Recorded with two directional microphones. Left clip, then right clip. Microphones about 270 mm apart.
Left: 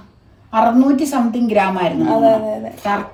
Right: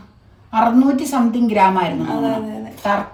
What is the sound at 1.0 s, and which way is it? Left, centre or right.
Speech, centre.